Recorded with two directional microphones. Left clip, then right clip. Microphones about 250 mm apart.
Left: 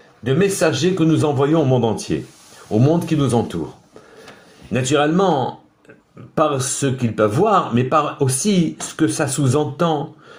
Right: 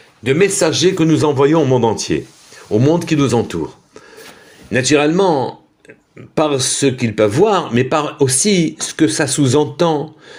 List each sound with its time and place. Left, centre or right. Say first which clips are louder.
0.3 s speech: right 4 dB; right
4.8 s speech: right 4 dB; centre